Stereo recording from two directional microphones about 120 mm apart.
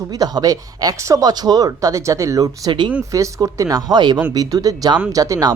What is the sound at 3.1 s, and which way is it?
Speech, 30° right (ahead or behind).